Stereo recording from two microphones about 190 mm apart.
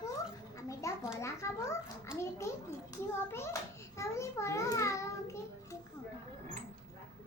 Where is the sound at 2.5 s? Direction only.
15° left (ahead or behind).